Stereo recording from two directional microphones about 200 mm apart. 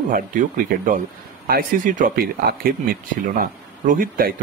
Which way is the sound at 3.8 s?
40° right (ahead or behind).